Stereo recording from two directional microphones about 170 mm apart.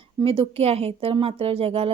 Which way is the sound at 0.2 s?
35° right (ahead or behind).